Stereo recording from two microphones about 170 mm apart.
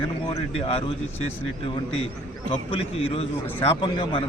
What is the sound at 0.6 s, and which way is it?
A man's voice, 35° left (ahead or behind).